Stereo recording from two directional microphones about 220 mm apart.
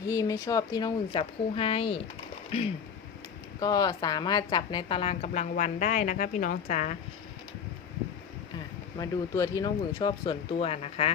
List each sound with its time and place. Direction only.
0.1 s a woman's voice: 15° left (ahead or behind)
3.6 s a woman's voice: 15° left (ahead or behind); by 6.9 s 35° left (ahead or behind)
9.0 s a woman's voice: 15° left (ahead or behind)